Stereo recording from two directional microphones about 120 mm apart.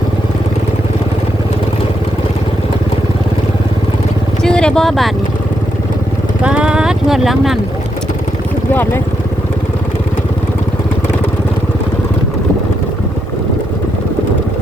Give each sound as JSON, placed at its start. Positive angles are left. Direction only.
{"t": 4.4, "sound": "speech", "side_deg": 5}
{"t": 6.4, "sound": "speech", "side_deg": -10}
{"t": 8.7, "sound": "speech", "side_deg": 20}